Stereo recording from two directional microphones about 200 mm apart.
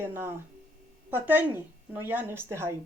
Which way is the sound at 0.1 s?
10° right (ahead or behind).